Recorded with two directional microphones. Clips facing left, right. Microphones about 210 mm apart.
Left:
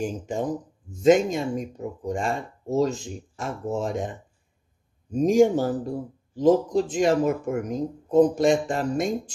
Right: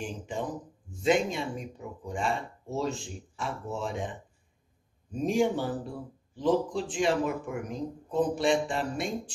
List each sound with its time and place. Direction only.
0.0 s speech: 45° left (ahead or behind)